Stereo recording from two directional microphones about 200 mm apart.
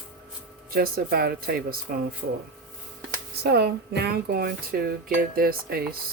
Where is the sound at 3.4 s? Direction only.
55° right (ahead or behind).